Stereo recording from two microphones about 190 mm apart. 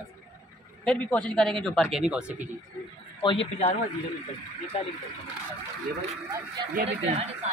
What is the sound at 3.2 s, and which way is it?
Speech, 25° left (ahead or behind).